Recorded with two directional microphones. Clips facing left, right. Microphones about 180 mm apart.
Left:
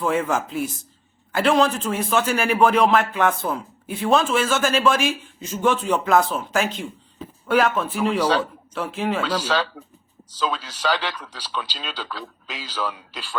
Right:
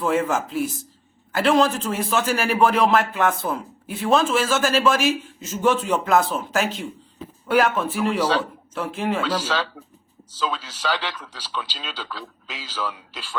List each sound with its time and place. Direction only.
0.0 s a man's voice: centre (ahead or behind)
9.5 s a man's voice: 45° left (ahead or behind)